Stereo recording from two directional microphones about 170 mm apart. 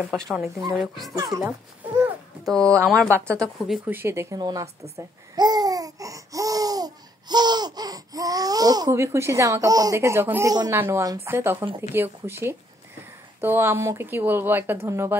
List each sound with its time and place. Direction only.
0.0 s speech: centre (ahead or behind)
1.1 s speech: 20° right (ahead or behind)
2.4 s speech: 5° left (ahead or behind)
3.8 s speech: 15° right (ahead or behind)
4.9 s babbling: 25° right (ahead or behind)
10.5 s speech: 20° right (ahead or behind)